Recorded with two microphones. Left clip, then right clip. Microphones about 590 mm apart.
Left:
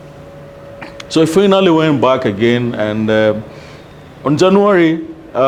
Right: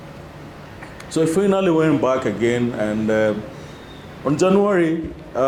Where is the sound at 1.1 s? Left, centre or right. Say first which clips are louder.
Left 7 dB; left.